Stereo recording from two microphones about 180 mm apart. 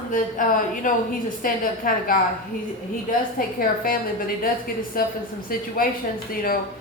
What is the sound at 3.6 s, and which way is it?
A woman's voice, 50° left (ahead or behind).